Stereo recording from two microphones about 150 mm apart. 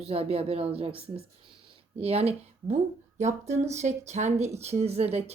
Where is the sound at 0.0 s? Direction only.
40° right (ahead or behind).